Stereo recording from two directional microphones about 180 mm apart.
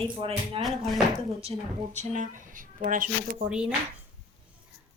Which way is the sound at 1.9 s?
40° right (ahead or behind).